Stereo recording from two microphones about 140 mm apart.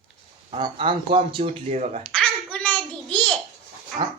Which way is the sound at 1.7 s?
55° right (ahead or behind).